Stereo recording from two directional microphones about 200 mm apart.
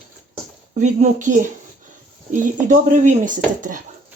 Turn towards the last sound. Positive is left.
turn(degrees=-40)  # may be behind; listen again after turning